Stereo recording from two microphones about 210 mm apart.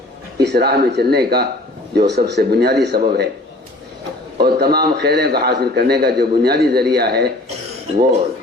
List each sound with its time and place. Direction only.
0.3 s a man's voice: 50° right (ahead or behind)
4.4 s a man's voice: 50° right (ahead or behind)